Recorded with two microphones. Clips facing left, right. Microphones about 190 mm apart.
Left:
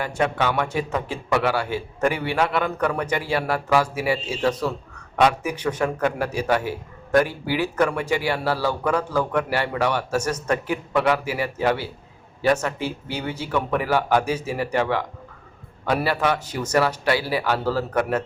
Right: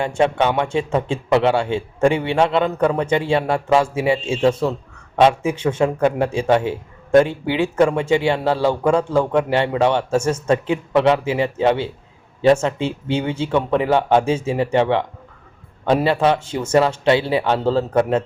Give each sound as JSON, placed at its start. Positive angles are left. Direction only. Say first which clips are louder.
{"t": 0.0, "sound": "a man's voice", "louder": "right 5 dB", "side_deg": -25}